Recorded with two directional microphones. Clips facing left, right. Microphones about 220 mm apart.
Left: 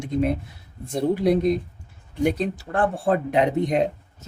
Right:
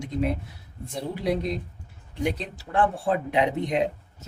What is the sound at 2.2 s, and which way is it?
Speech, 45° left (ahead or behind).